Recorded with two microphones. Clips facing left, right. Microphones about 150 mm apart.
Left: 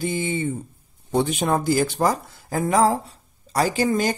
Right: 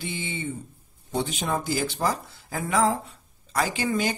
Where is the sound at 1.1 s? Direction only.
55° left (ahead or behind).